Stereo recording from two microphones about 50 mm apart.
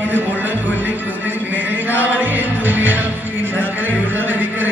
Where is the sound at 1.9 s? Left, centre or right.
Right.